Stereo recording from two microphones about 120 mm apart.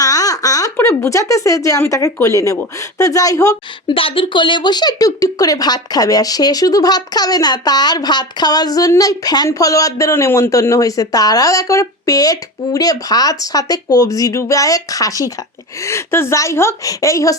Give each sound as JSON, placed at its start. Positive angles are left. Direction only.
{"t": 0.0, "sound": "a sound", "side_deg": 30}
{"t": 0.8, "sound": "speech", "side_deg": 25}
{"t": 3.9, "sound": "speech", "side_deg": 50}